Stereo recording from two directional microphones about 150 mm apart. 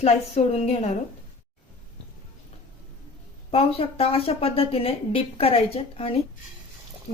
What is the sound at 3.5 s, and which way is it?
A woman's voice, 40° left (ahead or behind).